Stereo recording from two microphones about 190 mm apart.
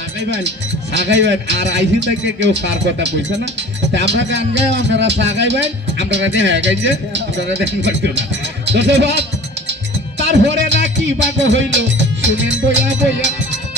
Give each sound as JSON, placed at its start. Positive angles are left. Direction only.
{"t": 0.9, "sound": "speech", "side_deg": -70}
{"t": 9.7, "sound": "music", "side_deg": -70}